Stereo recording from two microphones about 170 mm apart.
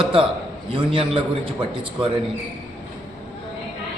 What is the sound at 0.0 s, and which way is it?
A man's voice, 30° right (ahead or behind).